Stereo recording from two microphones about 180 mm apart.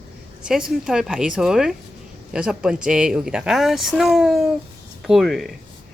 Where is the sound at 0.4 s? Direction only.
5° right (ahead or behind).